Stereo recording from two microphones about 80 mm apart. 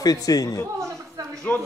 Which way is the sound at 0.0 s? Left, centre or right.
Left.